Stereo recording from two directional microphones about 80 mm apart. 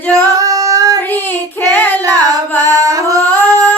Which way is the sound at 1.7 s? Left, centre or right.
Left.